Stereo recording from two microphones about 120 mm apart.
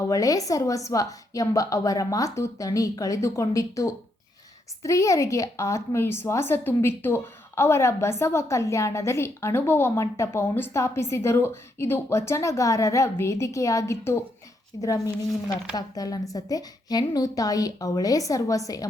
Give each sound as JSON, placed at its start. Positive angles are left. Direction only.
{"t": 0.1, "sound": "a woman's voice", "side_deg": 30}